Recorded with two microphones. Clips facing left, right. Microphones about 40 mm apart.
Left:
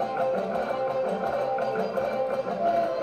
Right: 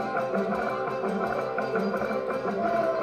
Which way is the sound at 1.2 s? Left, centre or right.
Left.